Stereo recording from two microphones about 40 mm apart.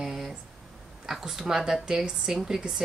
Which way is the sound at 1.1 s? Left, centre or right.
Centre.